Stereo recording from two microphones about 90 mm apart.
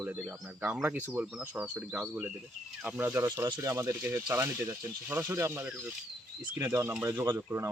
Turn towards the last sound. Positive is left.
turn(degrees=-35)  # may be behind; listen again after turning